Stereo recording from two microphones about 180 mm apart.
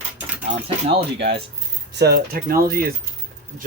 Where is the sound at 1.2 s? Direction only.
70° right (ahead or behind).